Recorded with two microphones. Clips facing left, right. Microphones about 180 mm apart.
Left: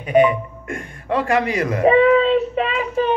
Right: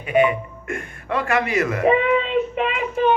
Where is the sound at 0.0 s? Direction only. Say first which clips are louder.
Left 3 dB; 40° left (ahead or behind).